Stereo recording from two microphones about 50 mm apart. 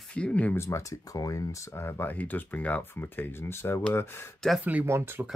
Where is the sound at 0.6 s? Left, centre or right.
Left.